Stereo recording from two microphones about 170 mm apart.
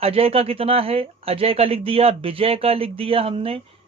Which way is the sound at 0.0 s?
35° right (ahead or behind).